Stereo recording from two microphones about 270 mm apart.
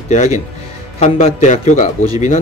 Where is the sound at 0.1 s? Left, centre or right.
Left.